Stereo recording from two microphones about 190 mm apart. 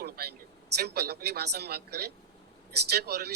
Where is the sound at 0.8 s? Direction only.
55° right (ahead or behind).